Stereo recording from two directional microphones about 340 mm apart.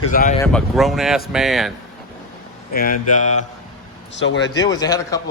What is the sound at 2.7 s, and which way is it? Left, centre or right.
Speech, left.